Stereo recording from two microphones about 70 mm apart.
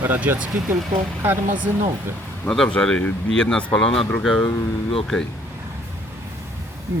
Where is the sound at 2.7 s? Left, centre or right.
Centre.